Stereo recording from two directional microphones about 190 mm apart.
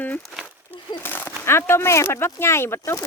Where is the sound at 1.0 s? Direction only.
10° left (ahead or behind).